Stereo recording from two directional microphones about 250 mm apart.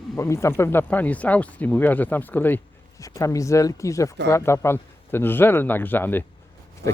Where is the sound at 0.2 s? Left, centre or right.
Centre.